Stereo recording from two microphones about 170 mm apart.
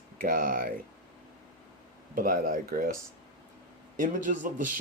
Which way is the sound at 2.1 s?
55° right (ahead or behind).